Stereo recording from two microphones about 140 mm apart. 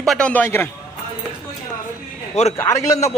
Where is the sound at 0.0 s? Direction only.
5° left (ahead or behind).